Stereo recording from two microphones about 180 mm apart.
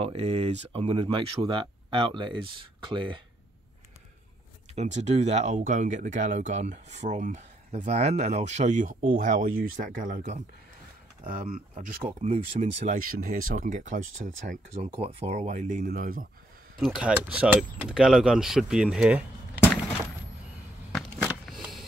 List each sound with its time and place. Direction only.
0.0 s speech: 35° right (ahead or behind)
4.7 s speech: 40° right (ahead or behind)
11.2 s speech: 45° right (ahead or behind)
15.0 s speech: 35° right (ahead or behind); by 16.3 s 50° right (ahead or behind)
16.7 s speech: 5° right (ahead or behind)
20.9 s a sound: 5° right (ahead or behind)